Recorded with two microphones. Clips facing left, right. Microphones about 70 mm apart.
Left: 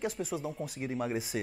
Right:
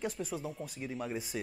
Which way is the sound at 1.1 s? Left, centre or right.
Centre.